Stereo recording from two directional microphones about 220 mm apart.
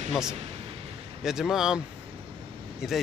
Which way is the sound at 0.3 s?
25° right (ahead or behind).